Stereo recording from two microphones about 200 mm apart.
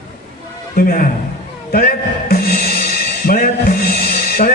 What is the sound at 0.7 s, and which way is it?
Speech, 45° left (ahead or behind).